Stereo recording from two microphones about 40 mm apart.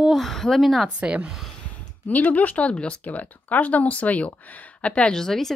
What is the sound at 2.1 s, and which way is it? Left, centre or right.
Speech, left.